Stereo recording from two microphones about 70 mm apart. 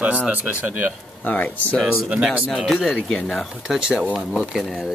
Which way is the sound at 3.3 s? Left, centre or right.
Centre.